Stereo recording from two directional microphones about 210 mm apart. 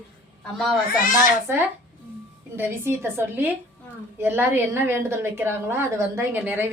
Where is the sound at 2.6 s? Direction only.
10° right (ahead or behind).